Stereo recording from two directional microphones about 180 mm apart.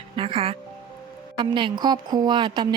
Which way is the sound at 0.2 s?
30° right (ahead or behind).